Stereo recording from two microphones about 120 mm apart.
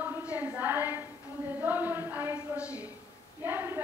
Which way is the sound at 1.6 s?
15° right (ahead or behind).